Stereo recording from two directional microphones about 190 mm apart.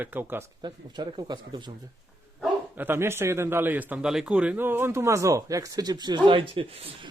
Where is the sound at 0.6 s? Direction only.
25° right (ahead or behind).